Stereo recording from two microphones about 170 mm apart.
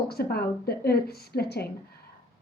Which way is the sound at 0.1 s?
65° left (ahead or behind).